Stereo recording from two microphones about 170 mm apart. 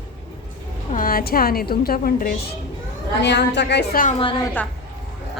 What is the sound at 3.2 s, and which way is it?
Speech, 90° left.